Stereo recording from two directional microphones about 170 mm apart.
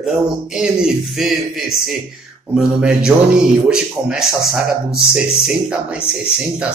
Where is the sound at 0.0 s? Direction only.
5° right (ahead or behind).